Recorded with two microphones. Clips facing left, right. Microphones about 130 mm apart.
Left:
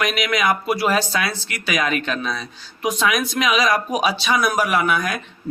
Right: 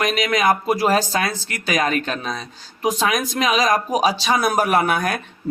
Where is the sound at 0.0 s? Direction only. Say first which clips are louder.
Right 2 dB; 35° right (ahead or behind).